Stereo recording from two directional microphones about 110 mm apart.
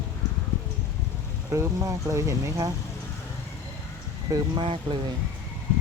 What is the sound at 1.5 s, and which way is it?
Speech, 30° right (ahead or behind).